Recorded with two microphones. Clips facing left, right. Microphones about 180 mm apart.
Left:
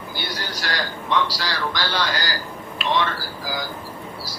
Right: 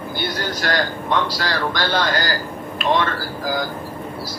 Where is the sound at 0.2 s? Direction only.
50° right (ahead or behind).